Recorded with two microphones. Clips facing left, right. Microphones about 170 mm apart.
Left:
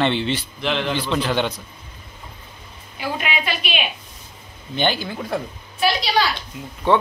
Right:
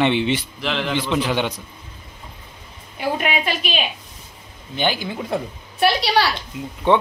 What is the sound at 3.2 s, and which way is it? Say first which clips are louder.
Speech: right 3 dB; 45° right (ahead or behind).